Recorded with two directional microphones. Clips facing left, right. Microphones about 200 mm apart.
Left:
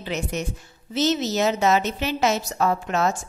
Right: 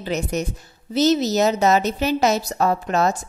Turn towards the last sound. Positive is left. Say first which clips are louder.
# right 3 dB
turn(degrees=-35)  # may be behind; listen again after turning